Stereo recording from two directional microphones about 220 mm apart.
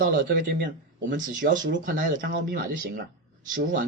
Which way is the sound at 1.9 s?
35° right (ahead or behind).